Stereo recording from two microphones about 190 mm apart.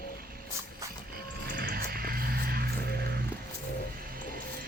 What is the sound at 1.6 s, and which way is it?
Music, 50° right (ahead or behind).